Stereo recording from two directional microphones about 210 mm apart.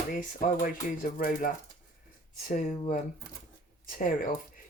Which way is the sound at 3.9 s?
40° left (ahead or behind).